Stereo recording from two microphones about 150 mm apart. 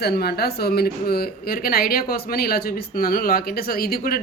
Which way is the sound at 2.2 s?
90° left.